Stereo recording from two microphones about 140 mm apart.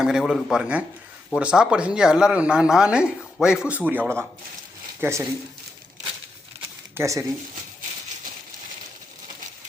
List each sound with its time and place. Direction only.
0.0 s a man's voice: 5° right (ahead or behind)
6.9 s speech: 20° right (ahead or behind)